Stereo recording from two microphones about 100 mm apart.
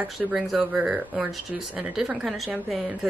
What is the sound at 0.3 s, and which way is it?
Speech, 5° right (ahead or behind).